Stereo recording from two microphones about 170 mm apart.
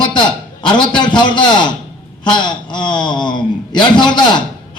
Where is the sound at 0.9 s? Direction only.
25° left (ahead or behind).